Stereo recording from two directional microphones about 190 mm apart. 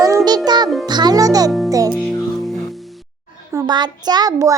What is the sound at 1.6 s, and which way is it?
Music, 20° right (ahead or behind).